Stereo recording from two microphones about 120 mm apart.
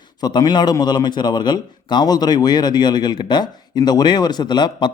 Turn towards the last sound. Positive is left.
turn(degrees=40)  # may be behind; listen again after turning